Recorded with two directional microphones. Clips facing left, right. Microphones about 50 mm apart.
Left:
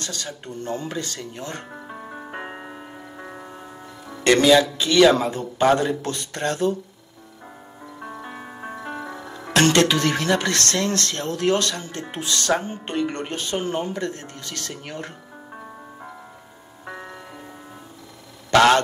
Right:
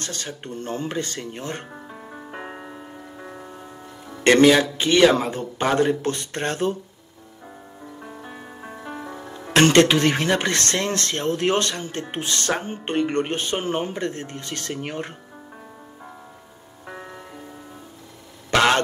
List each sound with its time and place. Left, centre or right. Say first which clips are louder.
0.0 s a man's voice: even; right
1.9 s music: left 3 dB; left
4.2 s a man's voice: right 1 dB; right
8.3 s music: left 3 dB; left
9.0 s music: left 1 dB; centre
9.5 s speech: right 2 dB; right
16.8 s music: left 2 dB; centre
18.5 s speech: left 3 dB; right